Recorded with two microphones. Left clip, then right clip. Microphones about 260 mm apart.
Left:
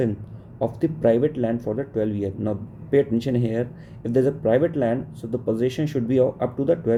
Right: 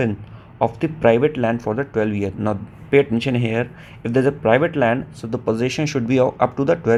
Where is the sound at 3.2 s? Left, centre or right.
Centre.